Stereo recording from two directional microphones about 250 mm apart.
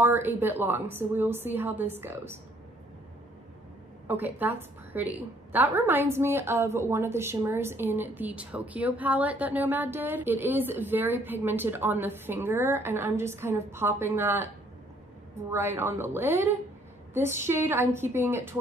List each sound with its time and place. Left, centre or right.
0.0 s a woman's voice: centre
4.1 s a woman's voice: centre
15.5 s a woman's voice: centre